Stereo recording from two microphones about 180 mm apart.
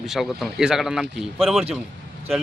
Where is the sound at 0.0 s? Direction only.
Centre (ahead or behind).